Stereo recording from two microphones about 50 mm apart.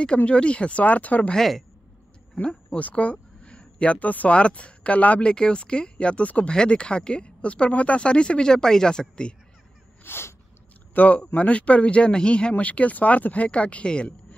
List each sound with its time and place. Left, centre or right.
0.0 s speech: left
1.3 s a woman's voice: centre
2.4 s speech: left
5.2 s speech: centre
10.0 s sneeze: left
11.0 s speech: left